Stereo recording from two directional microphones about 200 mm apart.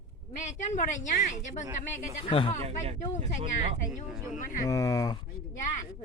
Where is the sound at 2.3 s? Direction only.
25° left (ahead or behind).